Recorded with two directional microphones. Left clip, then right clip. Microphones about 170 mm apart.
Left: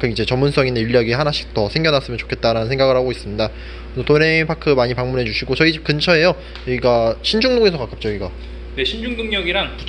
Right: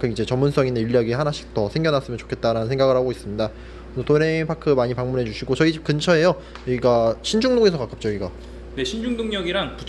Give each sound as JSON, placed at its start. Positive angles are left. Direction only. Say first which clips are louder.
{"t": 0.0, "sound": "a man's voice", "louder": "left 4 dB", "side_deg": -5}
{"t": 8.7, "sound": "a man's voice", "louder": "left 4 dB", "side_deg": -85}